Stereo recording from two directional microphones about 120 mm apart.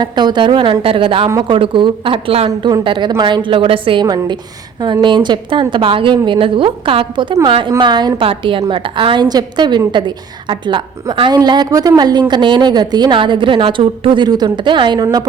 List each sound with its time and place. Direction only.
0.0 s a woman's voice: 40° right (ahead or behind); by 2.5 s 55° right (ahead or behind)
2.5 s a woman's voice: 30° right (ahead or behind)
2.8 s a woman's voice: 45° right (ahead or behind)
4.0 s a woman's voice: 35° right (ahead or behind)